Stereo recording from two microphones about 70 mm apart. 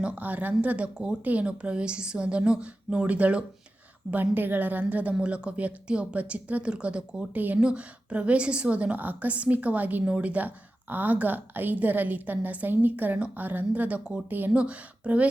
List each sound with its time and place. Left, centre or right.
0.0 s a woman's voice: right
7.3 s a woman's voice: right
14.3 s a woman's voice: right